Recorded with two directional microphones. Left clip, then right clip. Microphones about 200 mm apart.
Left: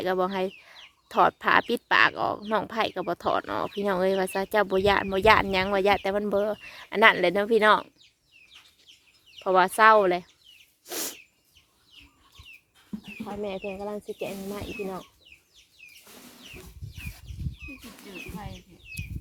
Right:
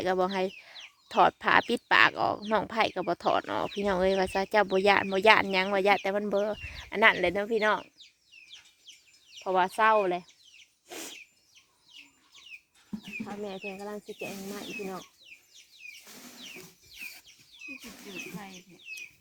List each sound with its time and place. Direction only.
0.0 s speech: centre (ahead or behind); by 7.9 s 20° left (ahead or behind)
9.4 s speech: 20° left (ahead or behind)
10.8 s bird: 30° left (ahead or behind)
13.2 s speech: 15° left (ahead or behind)